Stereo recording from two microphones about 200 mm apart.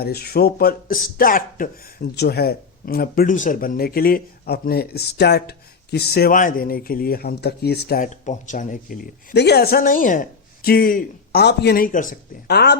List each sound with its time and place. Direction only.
0.0 s speech: 50° left (ahead or behind)
9.3 s speech: 55° left (ahead or behind)